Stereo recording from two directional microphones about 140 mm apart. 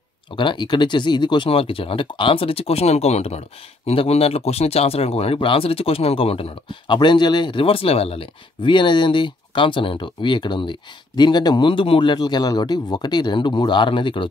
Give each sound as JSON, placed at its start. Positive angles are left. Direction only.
{"t": 0.4, "sound": "speech", "side_deg": 35}